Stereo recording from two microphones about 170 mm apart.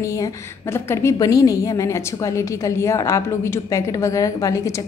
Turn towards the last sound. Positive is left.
turn(degrees=20)  # may be behind; listen again after turning